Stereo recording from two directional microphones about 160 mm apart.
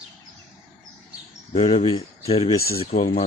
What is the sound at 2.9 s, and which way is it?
Speech, 60° left (ahead or behind).